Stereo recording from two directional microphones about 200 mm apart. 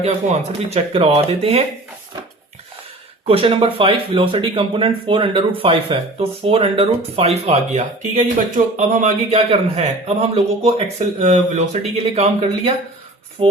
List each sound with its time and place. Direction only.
0.0 s speech: 35° right (ahead or behind)
3.2 s speech: 30° right (ahead or behind)